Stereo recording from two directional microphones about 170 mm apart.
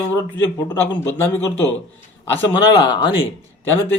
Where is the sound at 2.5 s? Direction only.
25° left (ahead or behind).